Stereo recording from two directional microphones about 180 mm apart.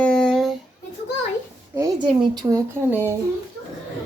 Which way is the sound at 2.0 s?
25° right (ahead or behind).